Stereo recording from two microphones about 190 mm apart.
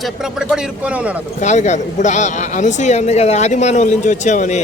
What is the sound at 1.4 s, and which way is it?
Speech, 40° left (ahead or behind).